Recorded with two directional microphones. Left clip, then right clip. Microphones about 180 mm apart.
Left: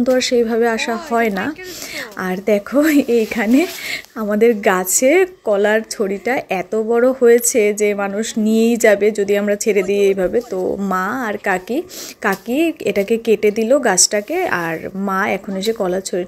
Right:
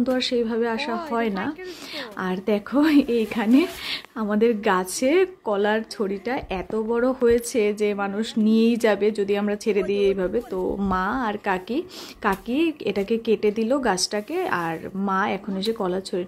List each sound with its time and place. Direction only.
0.0 s speech: 15° left (ahead or behind)